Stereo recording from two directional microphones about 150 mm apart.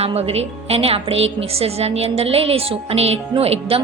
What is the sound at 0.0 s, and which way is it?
A woman's voice, 40° right (ahead or behind).